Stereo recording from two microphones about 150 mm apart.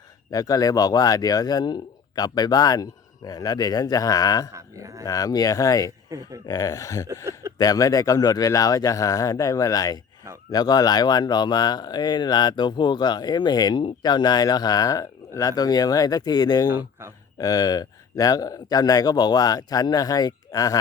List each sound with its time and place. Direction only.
0.3 s speech: 25° left (ahead or behind)
4.5 s speech: 20° right (ahead or behind)
5.0 s speech: 25° left (ahead or behind)
16.6 s speech: 15° right (ahead or behind)
17.3 s speech: 25° left (ahead or behind)